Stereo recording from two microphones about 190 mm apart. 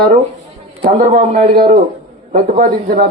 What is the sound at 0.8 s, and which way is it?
Speech, 35° right (ahead or behind).